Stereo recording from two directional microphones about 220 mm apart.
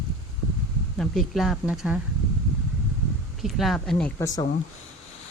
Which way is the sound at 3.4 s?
Centre (ahead or behind).